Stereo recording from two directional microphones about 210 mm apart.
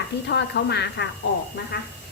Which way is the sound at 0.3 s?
55° left (ahead or behind).